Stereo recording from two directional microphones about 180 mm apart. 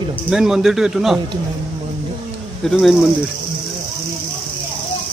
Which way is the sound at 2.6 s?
Centre (ahead or behind).